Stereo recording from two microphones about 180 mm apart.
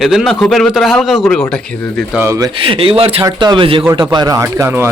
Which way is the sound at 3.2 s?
20° right (ahead or behind).